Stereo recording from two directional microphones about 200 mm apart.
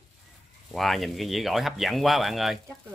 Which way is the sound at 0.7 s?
Centre (ahead or behind).